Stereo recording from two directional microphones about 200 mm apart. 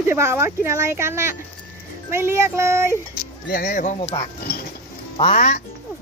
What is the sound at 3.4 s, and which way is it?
Speech, 45° left (ahead or behind).